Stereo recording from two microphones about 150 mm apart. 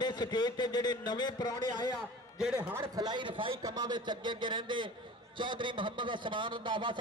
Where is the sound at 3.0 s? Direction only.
30° right (ahead or behind).